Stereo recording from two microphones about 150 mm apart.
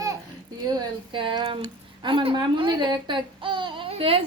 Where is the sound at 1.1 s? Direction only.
35° right (ahead or behind).